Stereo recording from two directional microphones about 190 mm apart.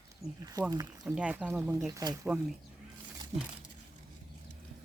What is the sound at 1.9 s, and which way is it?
Speech, 20° right (ahead or behind).